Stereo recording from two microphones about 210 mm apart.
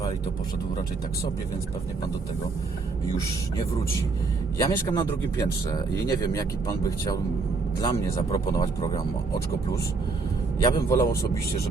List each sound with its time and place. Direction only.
4.6 s speech: 20° left (ahead or behind)
7.9 s speech: 20° left (ahead or behind)
10.6 s speech: 15° left (ahead or behind)